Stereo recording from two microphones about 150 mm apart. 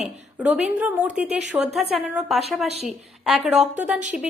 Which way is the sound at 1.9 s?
Centre (ahead or behind).